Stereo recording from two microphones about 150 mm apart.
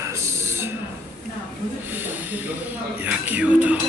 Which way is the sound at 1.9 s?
10° right (ahead or behind).